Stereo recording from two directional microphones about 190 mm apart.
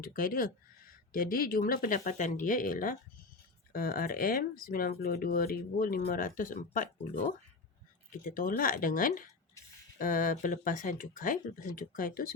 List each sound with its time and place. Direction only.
0.0 s speech: 50° left (ahead or behind)